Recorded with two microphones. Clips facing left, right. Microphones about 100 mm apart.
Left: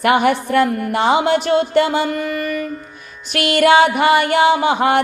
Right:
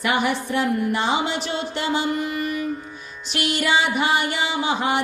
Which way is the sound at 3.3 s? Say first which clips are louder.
Left 9 dB; 60° left (ahead or behind).